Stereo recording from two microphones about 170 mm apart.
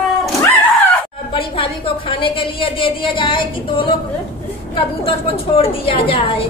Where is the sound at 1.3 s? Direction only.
35° left (ahead or behind).